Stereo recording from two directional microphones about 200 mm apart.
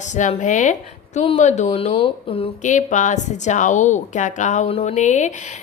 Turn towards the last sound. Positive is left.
turn(degrees=35)  # may be behind; listen again after turning